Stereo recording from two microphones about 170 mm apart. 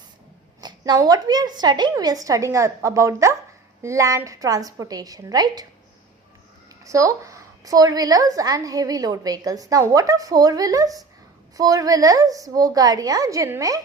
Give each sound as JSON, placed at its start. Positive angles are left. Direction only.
{"t": 0.6, "sound": "a woman's voice", "side_deg": -25}
{"t": 6.8, "sound": "a woman's voice", "side_deg": -20}